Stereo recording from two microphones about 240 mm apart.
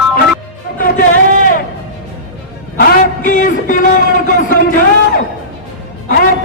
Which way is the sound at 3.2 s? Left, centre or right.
Left.